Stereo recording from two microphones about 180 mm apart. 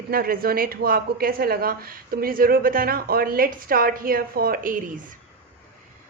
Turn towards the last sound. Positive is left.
turn(degrees=-50)  # may be behind; listen again after turning